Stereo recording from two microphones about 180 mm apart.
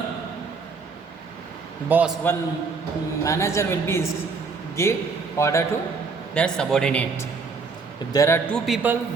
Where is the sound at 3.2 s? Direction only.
15° left (ahead or behind).